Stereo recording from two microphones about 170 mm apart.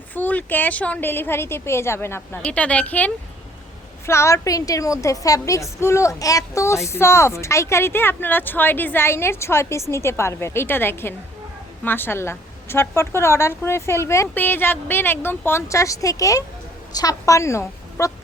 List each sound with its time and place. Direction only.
0.1 s a woman's voice: 10° left (ahead or behind)